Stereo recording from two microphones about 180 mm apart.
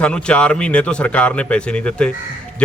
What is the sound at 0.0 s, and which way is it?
A man's voice, 5° left (ahead or behind).